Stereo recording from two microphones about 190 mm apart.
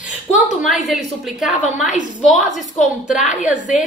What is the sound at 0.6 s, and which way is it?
Speech, centre (ahead or behind).